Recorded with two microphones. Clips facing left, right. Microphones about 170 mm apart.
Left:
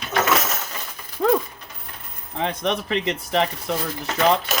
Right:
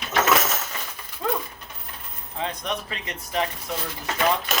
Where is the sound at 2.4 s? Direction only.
85° left.